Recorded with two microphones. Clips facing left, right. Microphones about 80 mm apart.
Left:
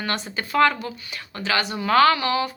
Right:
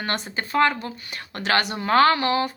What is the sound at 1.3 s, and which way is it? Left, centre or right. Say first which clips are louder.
Speech: right 2 dB; right.